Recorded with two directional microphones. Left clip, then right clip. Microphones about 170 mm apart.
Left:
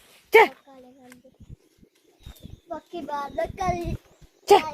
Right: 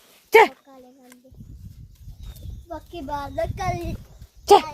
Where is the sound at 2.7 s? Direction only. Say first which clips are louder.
Right 1 dB; 65° right (ahead or behind).